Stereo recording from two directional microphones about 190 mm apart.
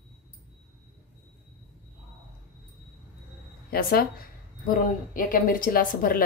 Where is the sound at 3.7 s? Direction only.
55° left (ahead or behind).